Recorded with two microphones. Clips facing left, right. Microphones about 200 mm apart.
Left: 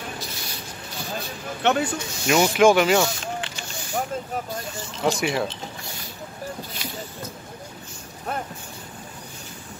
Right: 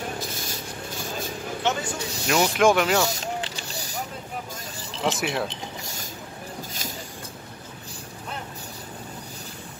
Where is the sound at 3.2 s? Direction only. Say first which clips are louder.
Even; 35° right (ahead or behind).